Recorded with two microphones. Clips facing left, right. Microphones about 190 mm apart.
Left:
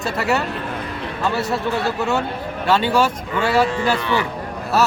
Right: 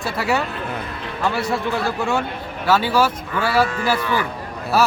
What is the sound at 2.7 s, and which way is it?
Speech, 5° right (ahead or behind).